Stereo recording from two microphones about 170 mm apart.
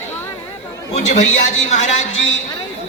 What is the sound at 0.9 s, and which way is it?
A man's voice, 45° left (ahead or behind).